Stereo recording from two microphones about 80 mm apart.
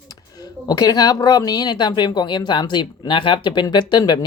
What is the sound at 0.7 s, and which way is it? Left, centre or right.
Speech, left.